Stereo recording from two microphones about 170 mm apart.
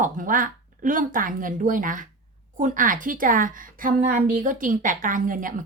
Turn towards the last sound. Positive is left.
turn(degrees=-50)  # may be behind; listen again after turning